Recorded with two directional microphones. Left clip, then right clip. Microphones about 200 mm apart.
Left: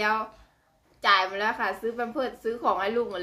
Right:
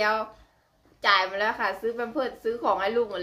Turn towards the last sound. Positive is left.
turn(degrees=5)  # may be behind; listen again after turning